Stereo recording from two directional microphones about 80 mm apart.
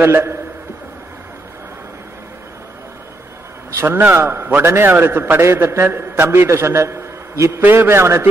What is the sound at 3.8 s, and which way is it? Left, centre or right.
A man's voice, right.